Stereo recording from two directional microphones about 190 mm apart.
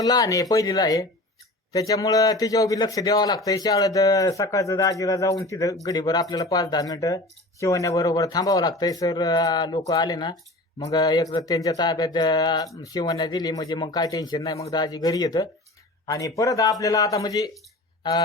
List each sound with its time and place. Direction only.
0.0 s a man's voice: 20° left (ahead or behind)